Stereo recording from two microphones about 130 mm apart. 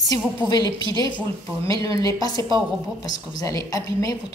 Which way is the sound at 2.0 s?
30° left (ahead or behind).